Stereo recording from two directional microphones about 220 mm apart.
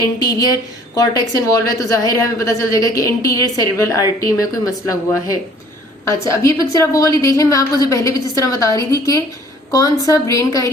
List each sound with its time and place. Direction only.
0.0 s a woman's voice: 15° left (ahead or behind)